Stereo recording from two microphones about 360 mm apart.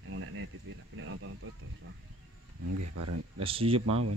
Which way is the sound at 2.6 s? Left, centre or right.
Right.